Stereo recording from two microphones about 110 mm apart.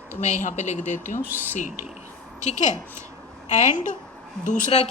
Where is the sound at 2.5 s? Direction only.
90° left.